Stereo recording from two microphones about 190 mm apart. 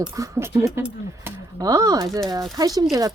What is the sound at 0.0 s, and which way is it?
Speech, 15° right (ahead or behind).